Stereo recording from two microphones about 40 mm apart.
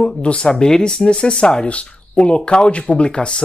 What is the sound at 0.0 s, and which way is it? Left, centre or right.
Speech, left.